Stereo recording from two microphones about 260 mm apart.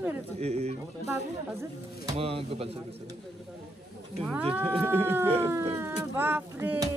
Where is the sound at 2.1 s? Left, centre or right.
Right.